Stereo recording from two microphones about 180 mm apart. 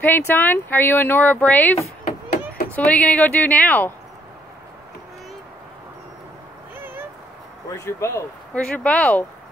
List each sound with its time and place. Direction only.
0.0 s speech: 10° left (ahead or behind)
6.8 s a sound: 10° right (ahead or behind)
7.7 s speech: 15° left (ahead or behind)